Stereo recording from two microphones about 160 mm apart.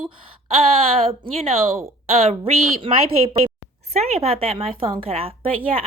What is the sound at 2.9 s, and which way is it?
Speech, 35° right (ahead or behind).